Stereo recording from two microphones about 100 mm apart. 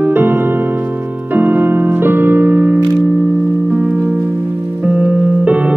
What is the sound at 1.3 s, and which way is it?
Music, 20° right (ahead or behind).